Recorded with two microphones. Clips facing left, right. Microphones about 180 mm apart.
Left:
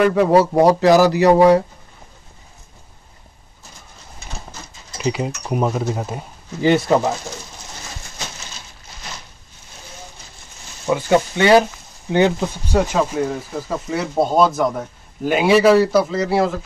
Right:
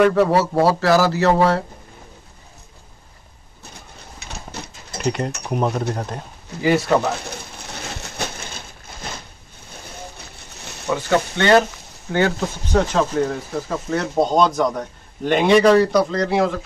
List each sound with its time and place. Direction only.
0.1 s speech: 15° left (ahead or behind)
4.5 s a sound: 65° right (ahead or behind)
5.0 s speech: 5° left (ahead or behind)
6.9 s speech: 15° left (ahead or behind)
7.2 s bird: 65° right (ahead or behind)
10.9 s speech: 15° left (ahead or behind)